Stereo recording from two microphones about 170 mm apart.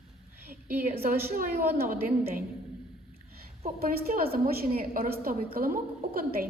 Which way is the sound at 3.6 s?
60° right (ahead or behind).